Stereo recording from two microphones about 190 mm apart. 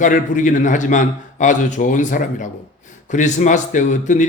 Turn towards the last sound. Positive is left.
turn(degrees=40)  # may be behind; listen again after turning